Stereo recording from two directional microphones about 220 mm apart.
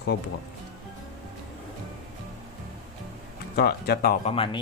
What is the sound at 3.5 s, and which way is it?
Speech, 45° left (ahead or behind).